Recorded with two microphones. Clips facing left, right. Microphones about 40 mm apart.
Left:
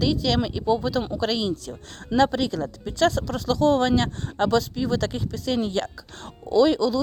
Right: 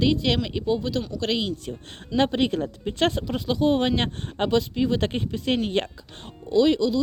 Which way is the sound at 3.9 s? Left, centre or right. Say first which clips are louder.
Left 3 dB; right.